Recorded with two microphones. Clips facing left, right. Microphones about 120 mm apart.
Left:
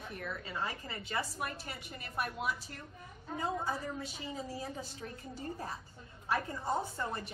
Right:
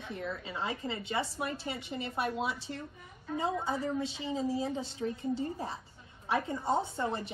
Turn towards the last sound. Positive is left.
turn(degrees=-25)  # may be behind; listen again after turning